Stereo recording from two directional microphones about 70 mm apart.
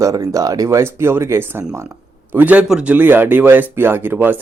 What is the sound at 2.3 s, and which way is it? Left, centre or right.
Speech, right.